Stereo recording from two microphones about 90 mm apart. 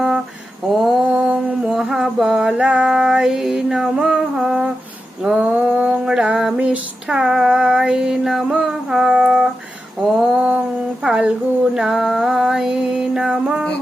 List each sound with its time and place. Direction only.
0.8 s mantra: centre (ahead or behind)
1.3 s mantra: 15° right (ahead or behind)
1.7 s female singing: 5° right (ahead or behind)
10.0 s a sound: centre (ahead or behind)
11.0 s speech: 5° right (ahead or behind)
11.7 s music: 5° right (ahead or behind)